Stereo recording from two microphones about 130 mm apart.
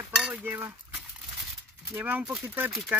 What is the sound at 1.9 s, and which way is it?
Speech, 15° right (ahead or behind).